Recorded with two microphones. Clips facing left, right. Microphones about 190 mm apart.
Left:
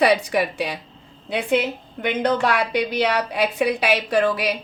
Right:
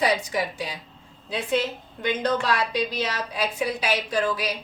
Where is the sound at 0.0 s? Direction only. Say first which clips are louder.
Left 6 dB; 65° left (ahead or behind).